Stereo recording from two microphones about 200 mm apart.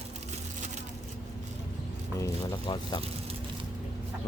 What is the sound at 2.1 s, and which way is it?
Speech, 20° left (ahead or behind).